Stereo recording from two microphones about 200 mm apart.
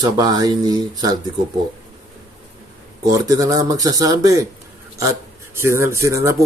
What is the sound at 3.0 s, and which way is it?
Speech, 15° right (ahead or behind).